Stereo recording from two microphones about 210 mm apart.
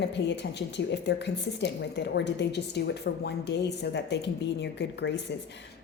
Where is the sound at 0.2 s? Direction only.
50° left (ahead or behind).